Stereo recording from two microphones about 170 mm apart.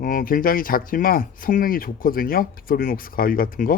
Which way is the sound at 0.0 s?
55° left (ahead or behind).